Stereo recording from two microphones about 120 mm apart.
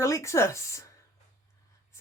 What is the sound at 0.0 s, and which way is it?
Speech, 25° left (ahead or behind).